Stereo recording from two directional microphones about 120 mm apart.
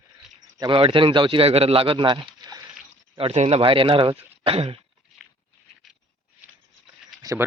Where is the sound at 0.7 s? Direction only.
50° right (ahead or behind).